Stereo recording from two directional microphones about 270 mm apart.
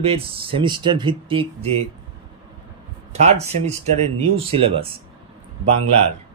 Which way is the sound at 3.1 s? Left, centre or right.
Right.